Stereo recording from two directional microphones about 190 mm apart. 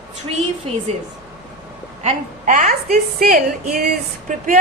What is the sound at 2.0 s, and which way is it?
A woman's voice, 40° right (ahead or behind).